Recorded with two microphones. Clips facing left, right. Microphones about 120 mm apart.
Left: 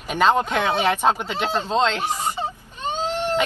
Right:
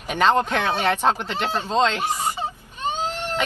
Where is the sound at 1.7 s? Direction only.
5° right (ahead or behind).